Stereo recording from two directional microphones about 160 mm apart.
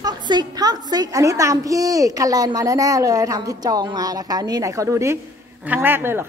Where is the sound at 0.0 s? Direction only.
25° right (ahead or behind).